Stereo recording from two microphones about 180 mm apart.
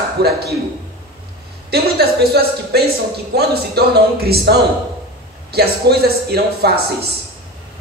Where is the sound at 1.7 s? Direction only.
60° right (ahead or behind).